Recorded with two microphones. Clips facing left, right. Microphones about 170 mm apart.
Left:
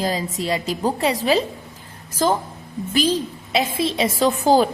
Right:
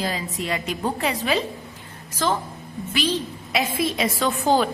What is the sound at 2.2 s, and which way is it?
Speech, 40° left (ahead or behind).